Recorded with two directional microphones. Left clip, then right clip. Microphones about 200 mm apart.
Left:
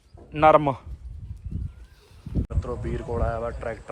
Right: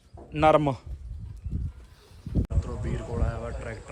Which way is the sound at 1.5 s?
Centre (ahead or behind).